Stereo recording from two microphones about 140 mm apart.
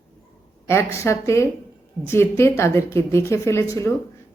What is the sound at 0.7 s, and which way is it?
A woman's voice, 20° left (ahead or behind).